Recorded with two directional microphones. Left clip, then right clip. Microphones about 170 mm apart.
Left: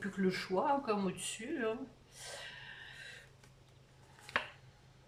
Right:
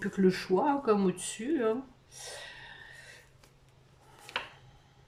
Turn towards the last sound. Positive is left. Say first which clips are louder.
# even
turn(degrees=-15)  # may be behind; listen again after turning